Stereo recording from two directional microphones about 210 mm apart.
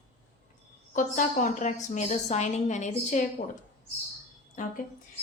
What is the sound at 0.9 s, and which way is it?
Speech, 40° left (ahead or behind).